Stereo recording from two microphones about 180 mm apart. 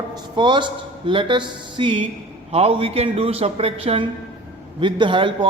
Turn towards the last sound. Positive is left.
turn(degrees=-30)  # may be behind; listen again after turning